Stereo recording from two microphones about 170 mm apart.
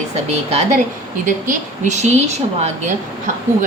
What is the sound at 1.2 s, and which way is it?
A woman's voice, 45° right (ahead or behind).